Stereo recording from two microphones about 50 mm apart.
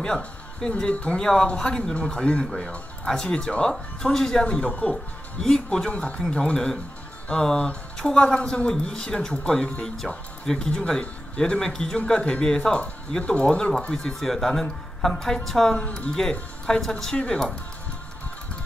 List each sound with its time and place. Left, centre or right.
0.6 s speech: centre
4.5 s speech: left
5.4 s speech: centre
5.9 s speech: left
13.2 s speech: left